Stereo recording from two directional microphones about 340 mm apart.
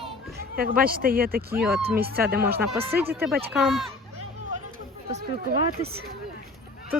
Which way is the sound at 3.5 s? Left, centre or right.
Centre.